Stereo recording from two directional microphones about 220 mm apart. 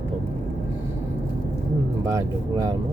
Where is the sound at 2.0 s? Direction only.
15° right (ahead or behind).